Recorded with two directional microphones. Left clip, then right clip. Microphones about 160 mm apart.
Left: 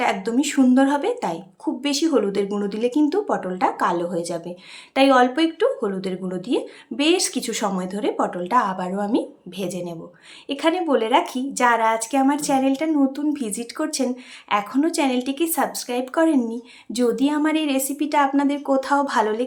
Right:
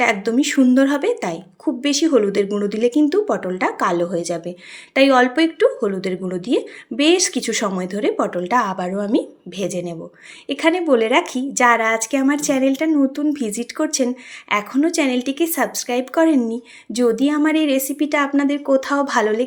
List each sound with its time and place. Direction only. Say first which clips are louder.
0.0 s a woman's voice: right 4 dB; 15° right (ahead or behind)